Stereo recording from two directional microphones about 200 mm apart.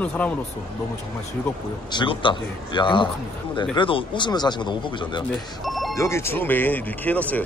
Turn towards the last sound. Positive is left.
turn(degrees=10)  # may be behind; listen again after turning